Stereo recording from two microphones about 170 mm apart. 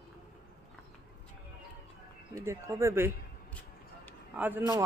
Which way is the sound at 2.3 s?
15° right (ahead or behind).